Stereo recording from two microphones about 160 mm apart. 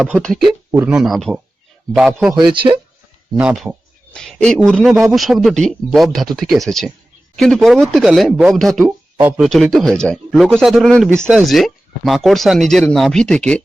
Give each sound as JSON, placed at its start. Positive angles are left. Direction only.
{"t": 0.2, "sound": "speech", "side_deg": 5}
{"t": 2.3, "sound": "speech", "side_deg": -30}
{"t": 3.3, "sound": "speech", "side_deg": -5}
{"t": 11.1, "sound": "speech", "side_deg": -10}